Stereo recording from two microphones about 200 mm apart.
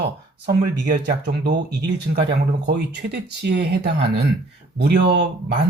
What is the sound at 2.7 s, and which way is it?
Speech, 55° right (ahead or behind).